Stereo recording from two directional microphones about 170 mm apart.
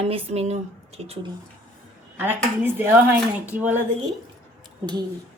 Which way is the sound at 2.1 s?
10° right (ahead or behind).